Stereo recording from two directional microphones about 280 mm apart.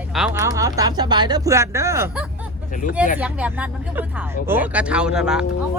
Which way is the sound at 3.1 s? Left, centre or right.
Centre.